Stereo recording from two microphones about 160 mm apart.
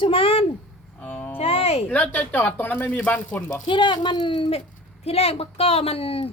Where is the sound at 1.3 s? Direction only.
35° left (ahead or behind).